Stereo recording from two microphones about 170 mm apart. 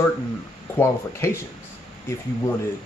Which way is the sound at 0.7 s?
15° left (ahead or behind).